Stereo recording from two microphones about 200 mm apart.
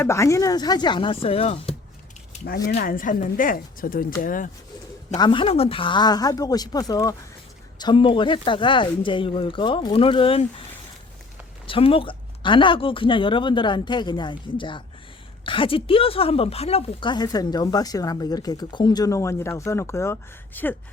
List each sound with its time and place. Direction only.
0.0 s a woman's voice: 15° left (ahead or behind)
2.6 s speech: 45° left (ahead or behind)
5.1 s a woman's voice: 25° left (ahead or behind)
11.6 s a woman's voice: 25° left (ahead or behind); by 20.7 s 10° left (ahead or behind)